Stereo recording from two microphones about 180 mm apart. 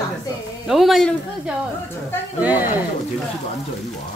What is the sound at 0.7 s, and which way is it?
Speech, centre (ahead or behind).